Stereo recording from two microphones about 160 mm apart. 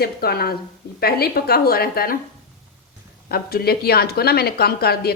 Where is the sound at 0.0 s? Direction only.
75° left (ahead or behind).